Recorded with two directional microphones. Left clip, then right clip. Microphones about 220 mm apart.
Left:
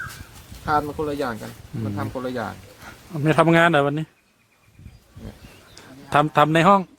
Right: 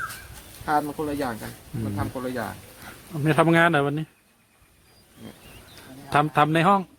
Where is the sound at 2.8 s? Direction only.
10° left (ahead or behind).